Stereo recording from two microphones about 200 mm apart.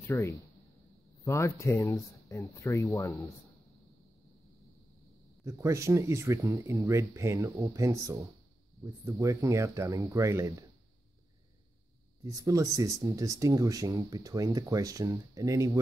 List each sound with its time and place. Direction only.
0.1 s speech: 15° left (ahead or behind)
5.4 s speech: 15° right (ahead or behind)
12.2 s speech: 15° right (ahead or behind)